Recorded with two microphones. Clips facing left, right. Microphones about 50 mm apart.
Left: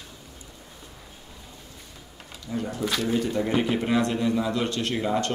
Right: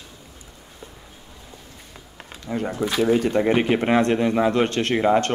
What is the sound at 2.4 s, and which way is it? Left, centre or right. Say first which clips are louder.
Speech: right 4 dB; right.